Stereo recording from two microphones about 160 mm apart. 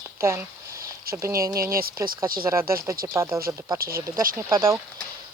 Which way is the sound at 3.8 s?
70° right (ahead or behind).